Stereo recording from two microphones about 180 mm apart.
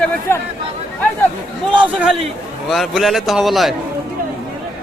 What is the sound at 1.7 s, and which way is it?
Speech, 5° right (ahead or behind).